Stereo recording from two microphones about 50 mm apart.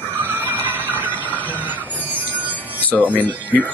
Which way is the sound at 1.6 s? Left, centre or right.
Right.